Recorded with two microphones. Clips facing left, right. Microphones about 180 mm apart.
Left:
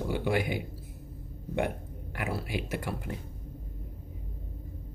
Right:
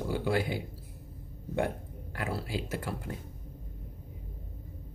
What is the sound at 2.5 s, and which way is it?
Speech, 20° left (ahead or behind).